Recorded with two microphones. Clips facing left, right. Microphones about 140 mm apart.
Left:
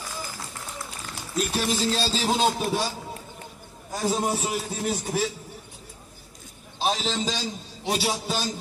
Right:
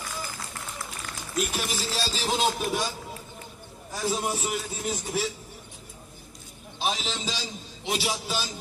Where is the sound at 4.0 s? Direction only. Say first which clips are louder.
Left 3 dB; 35° left (ahead or behind).